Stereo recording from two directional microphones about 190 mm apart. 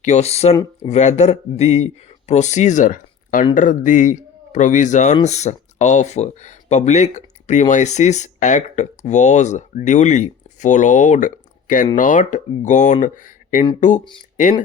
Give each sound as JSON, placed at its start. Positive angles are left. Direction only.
{"t": 0.0, "sound": "speech", "side_deg": 35}